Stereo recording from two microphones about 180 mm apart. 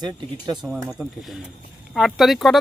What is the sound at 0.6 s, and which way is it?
Speech, 5° right (ahead or behind).